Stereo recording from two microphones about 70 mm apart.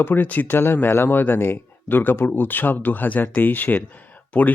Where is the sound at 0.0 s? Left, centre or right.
Left.